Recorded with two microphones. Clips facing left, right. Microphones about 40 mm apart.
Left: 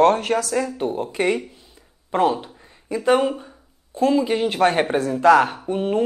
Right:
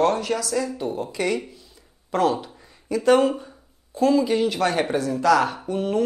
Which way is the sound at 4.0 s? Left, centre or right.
Left.